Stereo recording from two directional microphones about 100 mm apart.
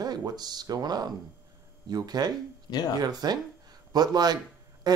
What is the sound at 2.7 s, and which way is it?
Speech, 40° left (ahead or behind).